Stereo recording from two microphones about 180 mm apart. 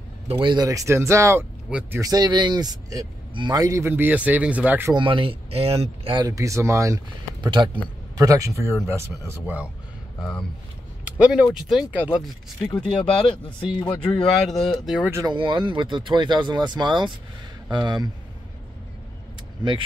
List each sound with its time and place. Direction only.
0.3 s speech: 25° right (ahead or behind); by 2.0 s 5° right (ahead or behind)
2.0 s speech: 20° right (ahead or behind)
4.9 s speech: 30° right (ahead or behind); by 9.7 s 10° right (ahead or behind)
11.1 s speech: 5° right (ahead or behind)
13.1 s speech: 30° left (ahead or behind)
14.1 s speech: centre (ahead or behind)
15.1 s speech: 25° right (ahead or behind)